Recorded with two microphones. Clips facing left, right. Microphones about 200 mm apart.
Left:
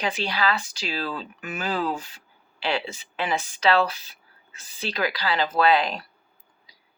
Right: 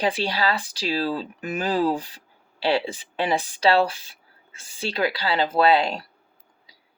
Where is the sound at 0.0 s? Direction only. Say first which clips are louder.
Right 2 dB; 30° right (ahead or behind).